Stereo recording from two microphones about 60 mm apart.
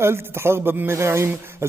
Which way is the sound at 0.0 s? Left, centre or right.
Right.